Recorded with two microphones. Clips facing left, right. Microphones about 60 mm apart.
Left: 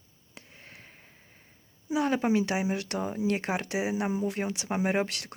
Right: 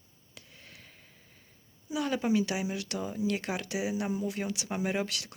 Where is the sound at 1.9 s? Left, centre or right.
Left.